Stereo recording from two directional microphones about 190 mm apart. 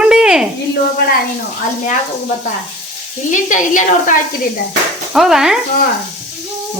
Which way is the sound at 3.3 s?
40° left (ahead or behind).